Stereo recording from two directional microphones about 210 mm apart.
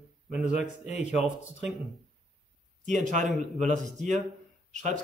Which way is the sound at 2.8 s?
35° right (ahead or behind).